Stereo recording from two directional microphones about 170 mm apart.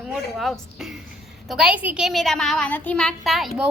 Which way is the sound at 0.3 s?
Centre (ahead or behind).